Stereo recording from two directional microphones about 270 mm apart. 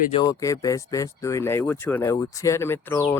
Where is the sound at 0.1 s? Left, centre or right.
Centre.